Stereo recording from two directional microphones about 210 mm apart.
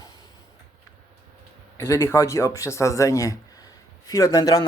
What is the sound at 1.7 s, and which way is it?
A man's voice, 15° left (ahead or behind).